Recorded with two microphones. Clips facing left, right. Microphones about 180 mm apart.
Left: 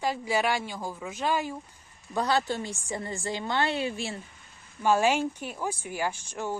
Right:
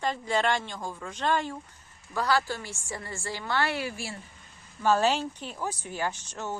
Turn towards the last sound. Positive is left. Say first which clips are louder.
# left 2 dB
turn(degrees=10)  # may be behind; listen again after turning